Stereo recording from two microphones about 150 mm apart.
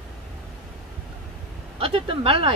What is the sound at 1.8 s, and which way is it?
Speech, 40° right (ahead or behind).